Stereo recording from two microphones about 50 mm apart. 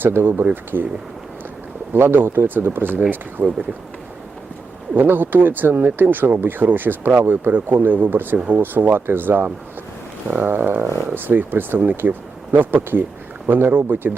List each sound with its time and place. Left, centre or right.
0.0 s speech: right
1.9 s speech: right
4.9 s speech: right